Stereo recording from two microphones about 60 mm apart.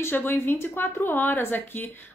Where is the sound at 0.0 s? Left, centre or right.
Left.